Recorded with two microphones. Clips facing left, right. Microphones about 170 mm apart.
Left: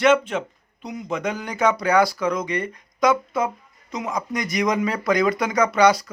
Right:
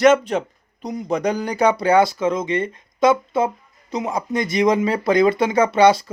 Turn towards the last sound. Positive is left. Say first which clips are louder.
# right 3 dB
turn(degrees=-25)  # may be behind; listen again after turning